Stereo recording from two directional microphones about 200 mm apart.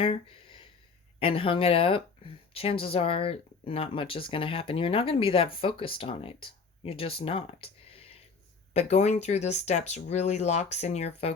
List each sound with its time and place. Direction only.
0.0 s speech: 25° left (ahead or behind)